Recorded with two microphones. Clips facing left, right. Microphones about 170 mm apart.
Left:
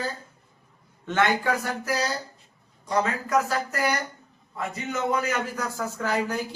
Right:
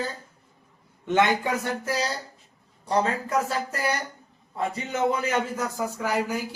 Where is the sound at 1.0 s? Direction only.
20° right (ahead or behind).